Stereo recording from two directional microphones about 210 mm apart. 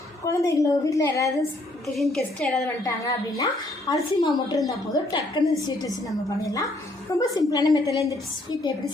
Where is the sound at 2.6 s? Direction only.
15° left (ahead or behind).